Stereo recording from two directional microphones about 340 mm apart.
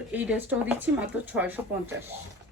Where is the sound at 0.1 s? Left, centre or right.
Centre.